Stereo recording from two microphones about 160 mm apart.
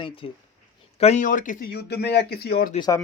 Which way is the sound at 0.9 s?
40° left (ahead or behind).